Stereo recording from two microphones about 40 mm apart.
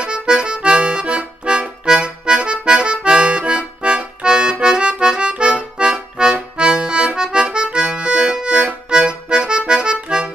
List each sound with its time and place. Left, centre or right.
0.0 s accordion: right
7.3 s music: right
8.9 s accordion: right